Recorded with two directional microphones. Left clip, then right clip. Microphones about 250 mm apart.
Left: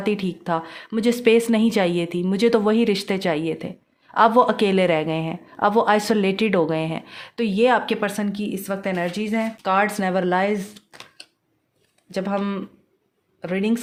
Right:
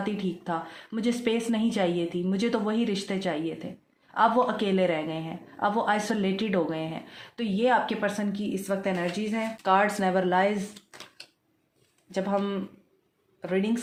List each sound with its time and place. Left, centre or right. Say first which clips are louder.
0.0 s a woman's voice: left 7 dB; left
12.1 s a woman's voice: left 3 dB; left